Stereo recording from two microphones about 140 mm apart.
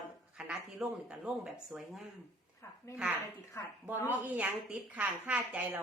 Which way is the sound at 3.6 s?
20° left (ahead or behind).